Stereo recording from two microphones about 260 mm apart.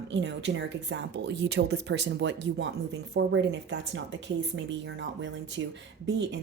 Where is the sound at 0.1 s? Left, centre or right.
Right.